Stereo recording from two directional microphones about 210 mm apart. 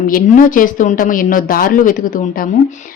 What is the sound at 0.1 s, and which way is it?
A woman's voice, 40° left (ahead or behind).